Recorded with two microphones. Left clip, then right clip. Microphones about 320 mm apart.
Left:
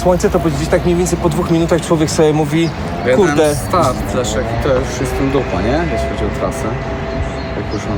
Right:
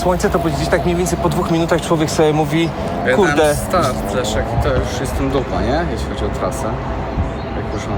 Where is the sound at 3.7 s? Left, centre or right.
Centre.